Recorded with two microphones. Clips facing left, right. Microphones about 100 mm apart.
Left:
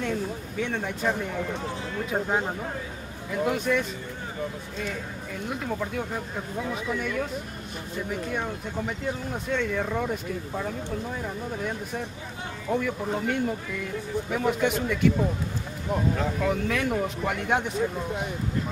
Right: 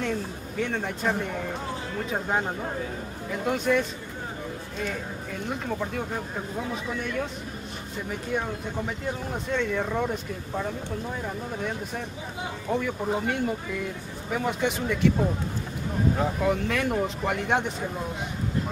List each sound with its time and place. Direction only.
0.0 s a man's voice: centre (ahead or behind)
3.4 s speech: centre (ahead or behind)
8.4 s speech: centre (ahead or behind)
12.7 s speech: 5° right (ahead or behind)
16.2 s speech: 5° right (ahead or behind)